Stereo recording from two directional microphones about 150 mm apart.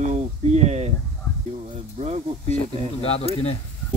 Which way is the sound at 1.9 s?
45° right (ahead or behind).